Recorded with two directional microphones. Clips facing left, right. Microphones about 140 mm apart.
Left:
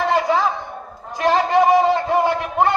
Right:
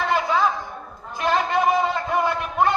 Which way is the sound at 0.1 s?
35° left (ahead or behind).